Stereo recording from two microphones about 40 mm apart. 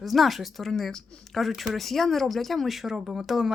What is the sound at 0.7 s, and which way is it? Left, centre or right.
Speech, centre.